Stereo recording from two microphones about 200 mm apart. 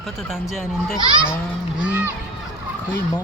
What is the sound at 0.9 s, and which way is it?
Speech, 25° right (ahead or behind).